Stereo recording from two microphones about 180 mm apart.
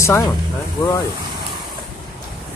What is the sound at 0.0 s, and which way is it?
Speech, 15° left (ahead or behind).